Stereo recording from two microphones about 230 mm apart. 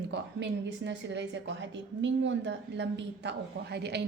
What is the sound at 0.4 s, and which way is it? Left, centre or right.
A woman's voice, right.